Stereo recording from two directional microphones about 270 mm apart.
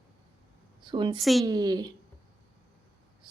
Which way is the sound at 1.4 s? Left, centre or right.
Centre.